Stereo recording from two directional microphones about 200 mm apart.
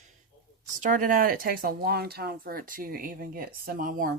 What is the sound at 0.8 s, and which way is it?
Speech, 40° right (ahead or behind).